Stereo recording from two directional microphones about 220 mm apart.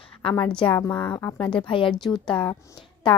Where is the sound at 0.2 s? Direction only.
25° left (ahead or behind).